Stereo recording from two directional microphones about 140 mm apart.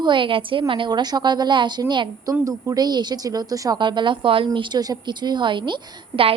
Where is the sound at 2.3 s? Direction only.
20° right (ahead or behind).